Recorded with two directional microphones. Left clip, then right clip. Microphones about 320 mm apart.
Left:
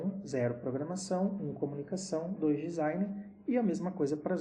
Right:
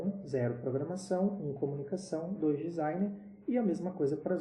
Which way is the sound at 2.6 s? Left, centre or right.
Left.